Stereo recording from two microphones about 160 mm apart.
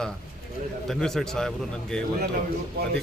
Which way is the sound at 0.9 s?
5° left (ahead or behind).